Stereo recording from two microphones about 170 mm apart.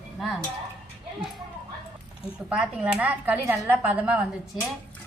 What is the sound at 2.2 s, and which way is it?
Speech, 5° right (ahead or behind).